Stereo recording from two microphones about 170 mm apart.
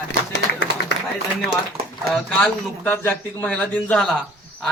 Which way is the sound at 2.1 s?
5° left (ahead or behind).